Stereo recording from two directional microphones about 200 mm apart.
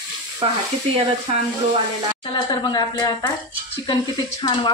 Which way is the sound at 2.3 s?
20° left (ahead or behind).